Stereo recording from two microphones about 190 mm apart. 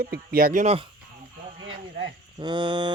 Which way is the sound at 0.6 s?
30° right (ahead or behind).